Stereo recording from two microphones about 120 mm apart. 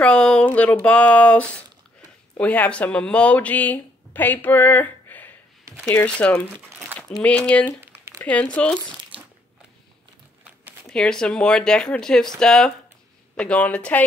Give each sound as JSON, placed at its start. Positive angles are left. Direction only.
{"t": 0.0, "sound": "speech", "side_deg": 10}
{"t": 7.8, "sound": "a sound", "side_deg": -20}
{"t": 8.2, "sound": "speech", "side_deg": 10}
{"t": 10.9, "sound": "speech", "side_deg": 5}